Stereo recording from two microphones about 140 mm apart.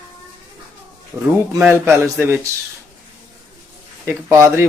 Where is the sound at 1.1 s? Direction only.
Centre (ahead or behind).